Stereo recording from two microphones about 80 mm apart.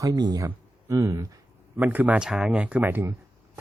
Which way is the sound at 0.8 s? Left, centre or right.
Right.